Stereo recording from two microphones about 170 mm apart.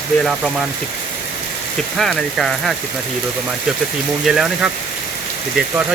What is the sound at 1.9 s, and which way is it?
Speech, centre (ahead or behind).